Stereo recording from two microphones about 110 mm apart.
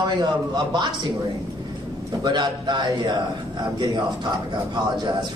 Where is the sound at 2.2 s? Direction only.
40° right (ahead or behind).